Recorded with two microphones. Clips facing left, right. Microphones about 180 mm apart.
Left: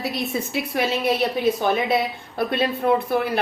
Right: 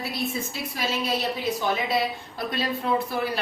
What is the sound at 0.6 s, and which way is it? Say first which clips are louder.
Speech: left 7 dB; 65° left (ahead or behind).